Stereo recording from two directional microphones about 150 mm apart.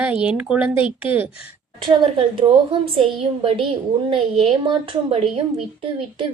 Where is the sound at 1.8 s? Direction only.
35° right (ahead or behind).